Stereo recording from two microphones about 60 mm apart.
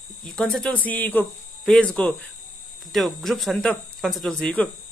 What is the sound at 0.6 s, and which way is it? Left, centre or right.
Speech, left.